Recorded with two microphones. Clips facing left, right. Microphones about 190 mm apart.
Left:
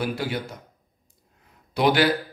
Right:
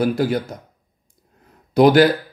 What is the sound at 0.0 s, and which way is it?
Speech, 45° right (ahead or behind).